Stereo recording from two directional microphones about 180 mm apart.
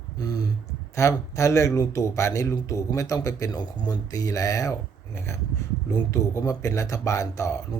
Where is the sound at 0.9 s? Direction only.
15° left (ahead or behind).